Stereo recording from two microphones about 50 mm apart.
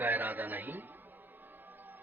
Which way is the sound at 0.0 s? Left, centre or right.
Right.